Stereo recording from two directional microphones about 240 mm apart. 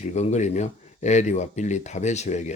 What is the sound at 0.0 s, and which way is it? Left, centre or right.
Speech, left.